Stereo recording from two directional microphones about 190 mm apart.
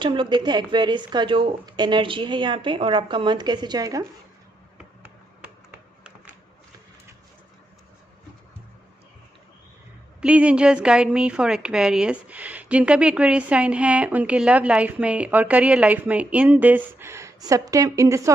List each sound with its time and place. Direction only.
0.0 s a woman's voice: 25° right (ahead or behind)
5.4 s a sound: 5° right (ahead or behind)
10.2 s a woman's voice: 5° right (ahead or behind)